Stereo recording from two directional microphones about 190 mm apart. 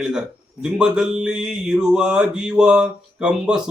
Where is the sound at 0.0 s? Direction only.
5° right (ahead or behind).